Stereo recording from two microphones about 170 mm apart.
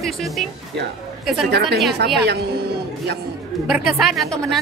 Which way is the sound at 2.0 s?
75° right (ahead or behind).